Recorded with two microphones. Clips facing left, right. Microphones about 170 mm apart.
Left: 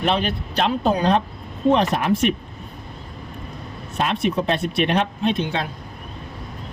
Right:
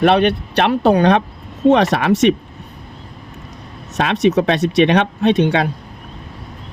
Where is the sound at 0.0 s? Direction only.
70° right (ahead or behind); by 2.3 s 90° right.